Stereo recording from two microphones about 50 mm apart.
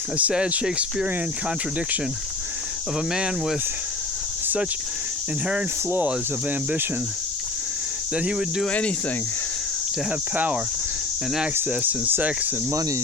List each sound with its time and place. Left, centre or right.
0.2 s speech: right
3.1 s speech: centre
8.1 s speech: centre
10.1 s speech: right
11.5 s speech: right